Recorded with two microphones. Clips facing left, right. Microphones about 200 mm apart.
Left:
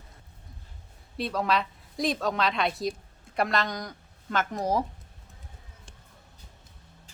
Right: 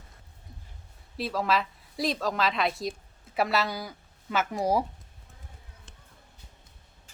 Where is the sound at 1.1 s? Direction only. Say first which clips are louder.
Even; centre (ahead or behind).